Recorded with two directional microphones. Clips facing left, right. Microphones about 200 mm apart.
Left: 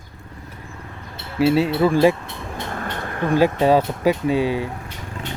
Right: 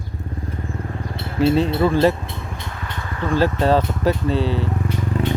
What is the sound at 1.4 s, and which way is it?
Speech, 5° left (ahead or behind).